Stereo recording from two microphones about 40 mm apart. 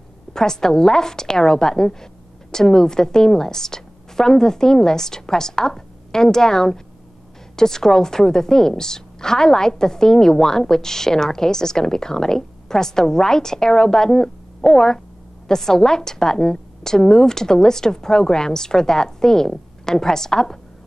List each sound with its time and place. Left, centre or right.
0.3 s a woman's voice: centre